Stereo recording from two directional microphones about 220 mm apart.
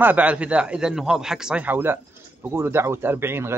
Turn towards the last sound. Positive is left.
turn(degrees=-10)  # may be behind; listen again after turning